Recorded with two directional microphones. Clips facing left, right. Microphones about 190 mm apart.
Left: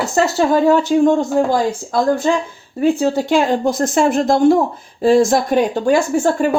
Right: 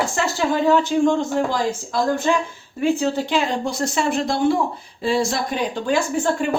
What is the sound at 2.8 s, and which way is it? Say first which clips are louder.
Speech: left 5 dB; 40° left (ahead or behind).